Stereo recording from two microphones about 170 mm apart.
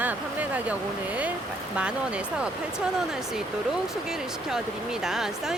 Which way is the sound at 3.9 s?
5° right (ahead or behind).